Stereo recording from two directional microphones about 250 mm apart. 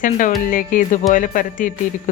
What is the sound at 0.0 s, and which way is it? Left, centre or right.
Speech, left.